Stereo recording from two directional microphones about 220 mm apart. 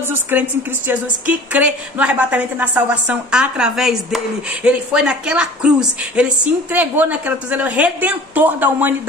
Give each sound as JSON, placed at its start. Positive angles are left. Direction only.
{"t": 0.1, "sound": "a woman's voice", "side_deg": -10}